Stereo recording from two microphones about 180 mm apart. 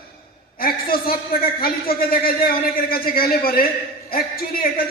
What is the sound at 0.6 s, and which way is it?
A man's voice, 55° left (ahead or behind).